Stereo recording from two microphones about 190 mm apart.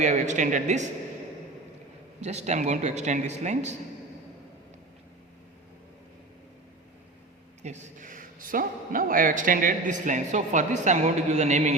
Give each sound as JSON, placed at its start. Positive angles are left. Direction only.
{"t": 0.0, "sound": "a man's voice", "side_deg": -40}
{"t": 2.2, "sound": "a man's voice", "side_deg": -35}
{"t": 7.6, "sound": "a man's voice", "side_deg": -40}